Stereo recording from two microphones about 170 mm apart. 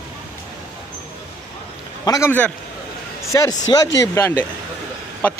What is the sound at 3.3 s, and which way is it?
Speech, 20° left (ahead or behind).